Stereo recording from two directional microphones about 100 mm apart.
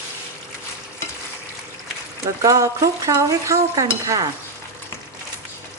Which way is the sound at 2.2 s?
35° right (ahead or behind).